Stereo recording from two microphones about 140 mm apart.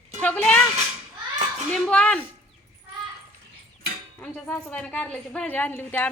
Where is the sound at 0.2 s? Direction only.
10° left (ahead or behind).